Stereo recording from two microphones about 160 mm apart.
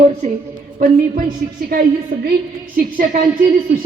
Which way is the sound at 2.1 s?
55° right (ahead or behind).